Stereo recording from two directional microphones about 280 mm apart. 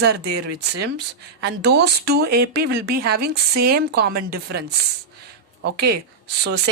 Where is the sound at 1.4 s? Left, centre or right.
Right.